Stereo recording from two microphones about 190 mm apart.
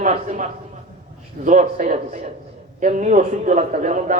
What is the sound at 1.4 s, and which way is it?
A man's voice, 40° right (ahead or behind).